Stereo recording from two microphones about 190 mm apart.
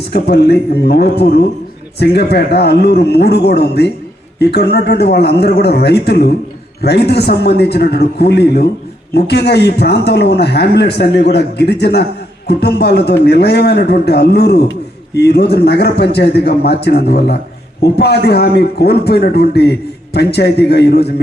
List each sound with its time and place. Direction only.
0.1 s speech: 60° left (ahead or behind)